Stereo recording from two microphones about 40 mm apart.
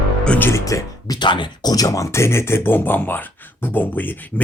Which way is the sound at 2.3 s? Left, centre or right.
Left.